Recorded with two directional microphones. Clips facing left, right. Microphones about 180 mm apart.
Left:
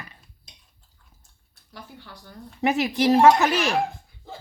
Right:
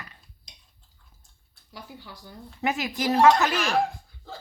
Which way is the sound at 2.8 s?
30° left (ahead or behind).